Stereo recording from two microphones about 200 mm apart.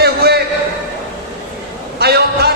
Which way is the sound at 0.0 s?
55° right (ahead or behind).